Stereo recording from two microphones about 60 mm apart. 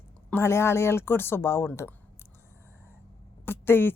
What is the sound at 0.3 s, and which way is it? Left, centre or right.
Speech, left.